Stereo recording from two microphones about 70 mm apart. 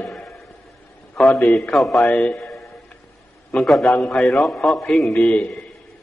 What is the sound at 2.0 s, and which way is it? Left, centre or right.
Speech, centre.